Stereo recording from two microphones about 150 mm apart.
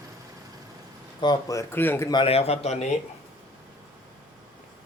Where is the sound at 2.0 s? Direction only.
35° left (ahead or behind).